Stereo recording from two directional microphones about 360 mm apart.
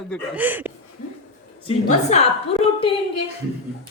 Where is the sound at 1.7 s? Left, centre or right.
Centre.